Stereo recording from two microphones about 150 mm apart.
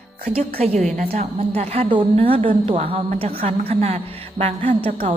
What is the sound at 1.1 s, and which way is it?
A woman's voice, 45° right (ahead or behind).